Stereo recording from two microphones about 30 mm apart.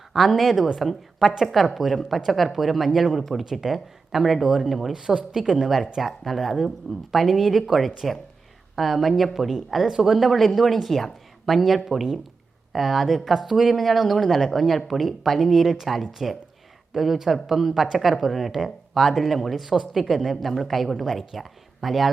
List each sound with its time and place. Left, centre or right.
0.1 s a woman's voice: centre
4.6 s a woman's voice: centre
4.9 s speech: centre
5.6 s a woman's voice: centre
9.3 s speech: centre
10.4 s a woman's voice: centre
12.7 s a woman's voice: centre
13.7 s a woman's voice: centre